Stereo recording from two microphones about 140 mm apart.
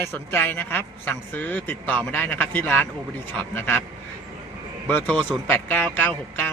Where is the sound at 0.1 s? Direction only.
15° left (ahead or behind).